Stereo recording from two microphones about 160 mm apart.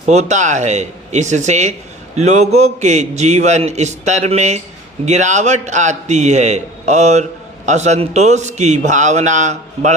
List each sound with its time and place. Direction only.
0.0 s a man's voice: 45° right (ahead or behind)